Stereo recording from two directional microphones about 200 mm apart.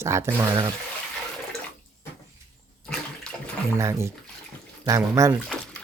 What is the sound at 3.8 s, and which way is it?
Speech, 15° right (ahead or behind).